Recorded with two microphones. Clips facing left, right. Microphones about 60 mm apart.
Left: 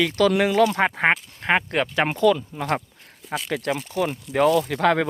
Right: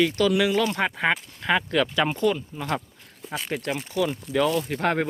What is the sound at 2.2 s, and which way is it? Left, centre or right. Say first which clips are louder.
Speech: left 5 dB; left.